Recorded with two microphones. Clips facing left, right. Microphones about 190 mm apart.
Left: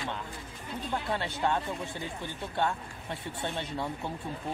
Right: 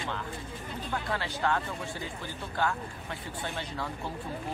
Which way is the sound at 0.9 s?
25° left (ahead or behind).